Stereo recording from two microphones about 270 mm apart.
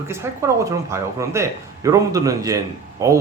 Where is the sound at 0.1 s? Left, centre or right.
Centre.